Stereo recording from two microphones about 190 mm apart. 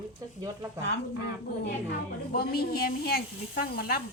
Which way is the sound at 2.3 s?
55° left (ahead or behind).